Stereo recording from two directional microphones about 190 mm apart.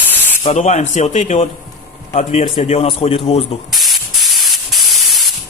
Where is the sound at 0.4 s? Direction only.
35° left (ahead or behind).